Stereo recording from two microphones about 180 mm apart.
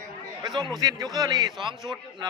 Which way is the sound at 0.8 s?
20° right (ahead or behind).